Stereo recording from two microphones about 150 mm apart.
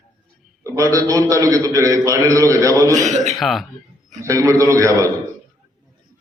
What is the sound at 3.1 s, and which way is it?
Speech, 50° right (ahead or behind).